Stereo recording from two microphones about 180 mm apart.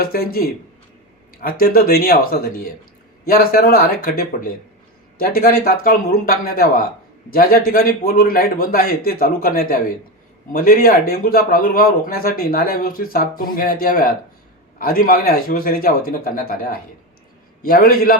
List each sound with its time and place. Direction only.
0.0 s a man's voice: 55° left (ahead or behind)